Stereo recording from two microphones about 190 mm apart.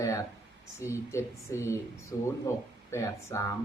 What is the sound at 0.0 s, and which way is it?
Speech, 20° left (ahead or behind).